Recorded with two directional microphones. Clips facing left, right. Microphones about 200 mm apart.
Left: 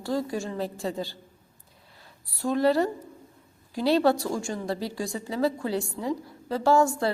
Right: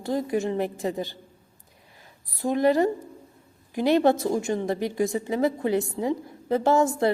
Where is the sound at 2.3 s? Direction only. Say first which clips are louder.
Right 2 dB; 15° right (ahead or behind).